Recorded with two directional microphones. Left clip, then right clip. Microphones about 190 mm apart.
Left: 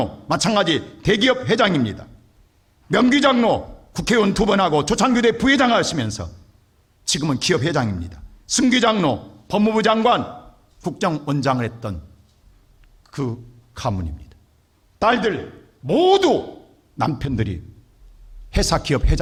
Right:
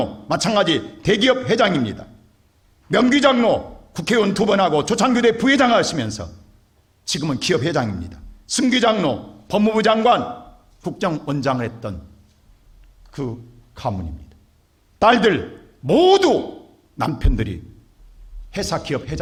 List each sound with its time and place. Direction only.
0.0 s a man's voice: 20° left (ahead or behind)
13.1 s a sound: 35° left (ahead or behind)
13.7 s a man's voice: 25° left (ahead or behind)
14.9 s a man's voice: 5° right (ahead or behind)
15.2 s a man's voice: 15° right (ahead or behind)
15.9 s speech: centre (ahead or behind)
17.0 s a man's voice: 15° left (ahead or behind)
18.5 s a man's voice: 35° left (ahead or behind)